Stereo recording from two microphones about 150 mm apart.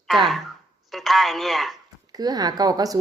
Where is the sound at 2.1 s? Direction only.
25° right (ahead or behind).